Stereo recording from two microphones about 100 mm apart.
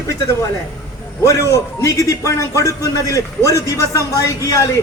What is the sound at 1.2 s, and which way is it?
A man's voice, 30° left (ahead or behind).